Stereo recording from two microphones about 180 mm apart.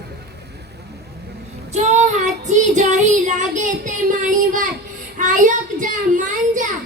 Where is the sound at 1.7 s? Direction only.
40° right (ahead or behind).